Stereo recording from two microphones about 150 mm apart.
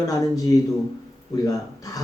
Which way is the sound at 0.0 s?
25° left (ahead or behind).